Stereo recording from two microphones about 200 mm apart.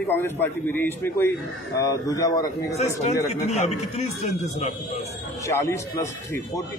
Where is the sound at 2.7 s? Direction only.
35° left (ahead or behind).